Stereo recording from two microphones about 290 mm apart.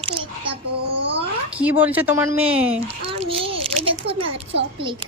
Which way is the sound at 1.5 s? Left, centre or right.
Centre.